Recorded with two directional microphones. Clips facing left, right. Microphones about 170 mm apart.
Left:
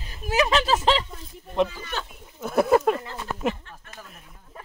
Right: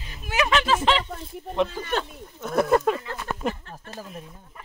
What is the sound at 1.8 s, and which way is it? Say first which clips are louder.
Speech: right 6 dB; 55° right (ahead or behind).